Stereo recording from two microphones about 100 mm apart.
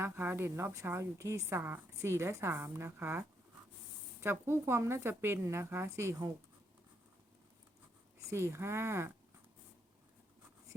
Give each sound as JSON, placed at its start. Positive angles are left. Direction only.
{"t": 0.0, "sound": "speech", "side_deg": -20}
{"t": 8.3, "sound": "speech", "side_deg": -30}